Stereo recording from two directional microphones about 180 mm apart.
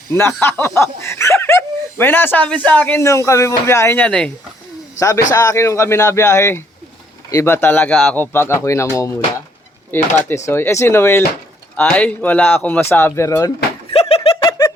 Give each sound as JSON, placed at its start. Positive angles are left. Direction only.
{"t": 0.1, "sound": "speech", "side_deg": 10}
{"t": 4.9, "sound": "speech", "side_deg": 15}
{"t": 13.9, "sound": "a sound", "side_deg": 35}